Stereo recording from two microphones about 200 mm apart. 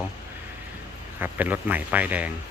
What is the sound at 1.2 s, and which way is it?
Speech, 10° right (ahead or behind).